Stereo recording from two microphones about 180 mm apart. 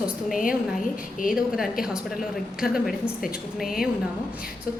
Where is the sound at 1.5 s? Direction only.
5° right (ahead or behind).